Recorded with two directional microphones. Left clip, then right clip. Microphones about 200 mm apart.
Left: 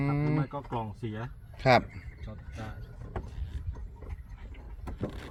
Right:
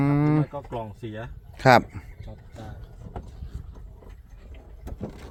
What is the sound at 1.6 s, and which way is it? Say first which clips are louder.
Livestock: right 6 dB; 45° right (ahead or behind).